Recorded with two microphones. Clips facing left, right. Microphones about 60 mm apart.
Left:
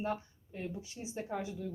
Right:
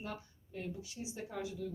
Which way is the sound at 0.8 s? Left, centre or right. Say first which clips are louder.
Left 4 dB; left.